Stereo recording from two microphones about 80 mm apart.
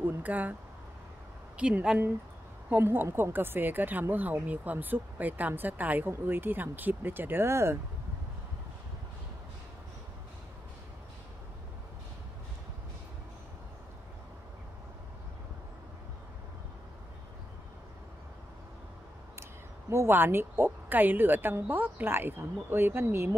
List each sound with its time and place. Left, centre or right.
0.0 s speech: right
1.6 s speech: centre; by 7.8 s right
19.9 s speech: right